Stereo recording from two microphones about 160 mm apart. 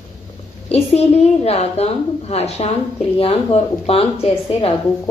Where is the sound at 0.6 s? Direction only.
40° left (ahead or behind).